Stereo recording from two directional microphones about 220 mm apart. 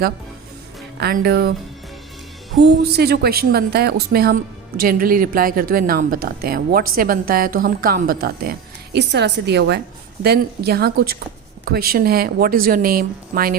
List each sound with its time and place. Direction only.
0.9 s a woman's voice: 45° right (ahead or behind)
2.6 s a woman's voice: 50° right (ahead or behind)